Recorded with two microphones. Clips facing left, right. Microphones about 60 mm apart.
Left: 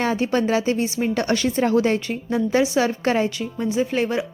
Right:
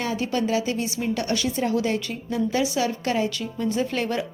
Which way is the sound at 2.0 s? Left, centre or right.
Left.